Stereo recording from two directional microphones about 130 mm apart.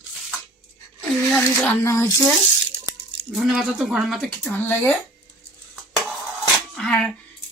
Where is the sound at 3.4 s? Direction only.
Centre (ahead or behind).